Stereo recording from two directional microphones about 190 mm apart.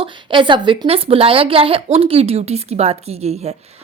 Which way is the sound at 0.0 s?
25° right (ahead or behind).